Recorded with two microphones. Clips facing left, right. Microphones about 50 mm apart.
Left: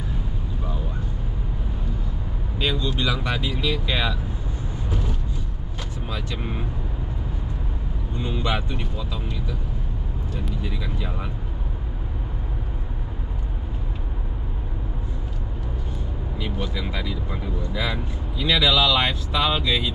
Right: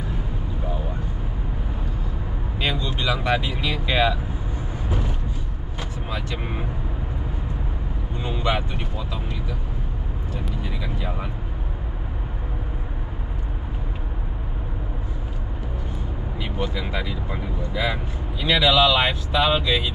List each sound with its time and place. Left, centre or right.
2.6 s speech: right
5.8 s vehicle: right
8.2 s speech: right
11.0 s speech: centre
16.3 s speech: right